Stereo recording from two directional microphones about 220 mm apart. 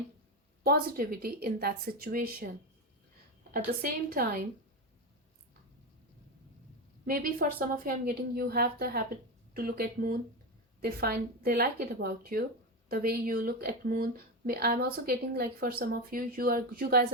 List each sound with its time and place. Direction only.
0.6 s a woman's voice: 45° right (ahead or behind)
3.7 s a woman's voice: 45° right (ahead or behind)
7.0 s a woman's voice: 40° right (ahead or behind)